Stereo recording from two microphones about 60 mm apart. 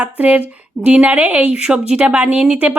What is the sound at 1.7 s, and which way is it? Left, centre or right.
Speech, centre.